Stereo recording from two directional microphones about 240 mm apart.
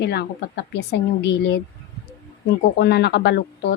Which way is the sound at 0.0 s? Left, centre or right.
Left.